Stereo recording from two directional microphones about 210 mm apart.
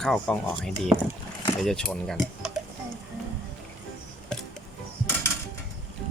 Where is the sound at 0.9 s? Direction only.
15° right (ahead or behind).